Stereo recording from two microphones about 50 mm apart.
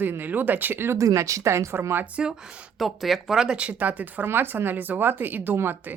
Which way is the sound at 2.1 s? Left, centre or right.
Centre.